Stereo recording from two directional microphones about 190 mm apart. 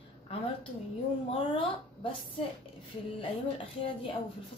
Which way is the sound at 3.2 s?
30° left (ahead or behind).